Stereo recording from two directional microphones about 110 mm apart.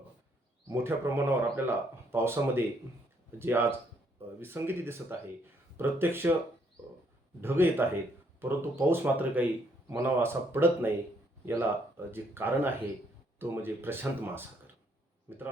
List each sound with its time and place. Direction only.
0.7 s speech: 20° right (ahead or behind)
7.4 s speech: 20° right (ahead or behind)